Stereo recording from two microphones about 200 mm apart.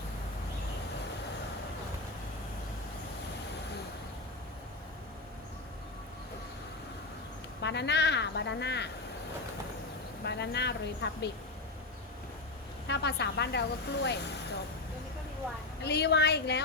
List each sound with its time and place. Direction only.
7.6 s speech: 60° left (ahead or behind)
10.2 s speech: 60° left (ahead or behind)
12.9 s speech: 60° left (ahead or behind)
15.8 s speech: 55° left (ahead or behind)